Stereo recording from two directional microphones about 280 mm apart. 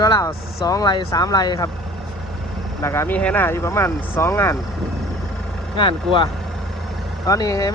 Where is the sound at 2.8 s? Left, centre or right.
Centre.